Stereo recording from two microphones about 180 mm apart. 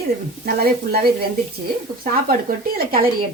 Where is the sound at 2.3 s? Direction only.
50° right (ahead or behind).